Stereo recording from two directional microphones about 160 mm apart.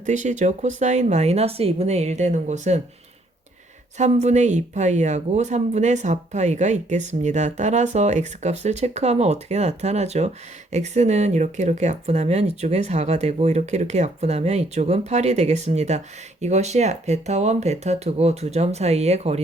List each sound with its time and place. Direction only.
0.0 s speech: 50° right (ahead or behind)
3.9 s speech: 45° right (ahead or behind)